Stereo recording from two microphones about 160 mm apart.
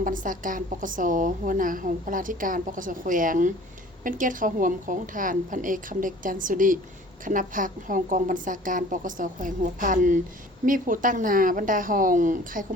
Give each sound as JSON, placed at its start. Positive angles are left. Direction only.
{"t": 0.0, "sound": "a woman's voice", "side_deg": -55}